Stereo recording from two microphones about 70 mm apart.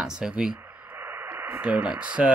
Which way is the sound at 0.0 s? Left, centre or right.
Centre.